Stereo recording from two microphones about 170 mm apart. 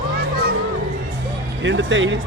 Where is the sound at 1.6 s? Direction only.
90° right.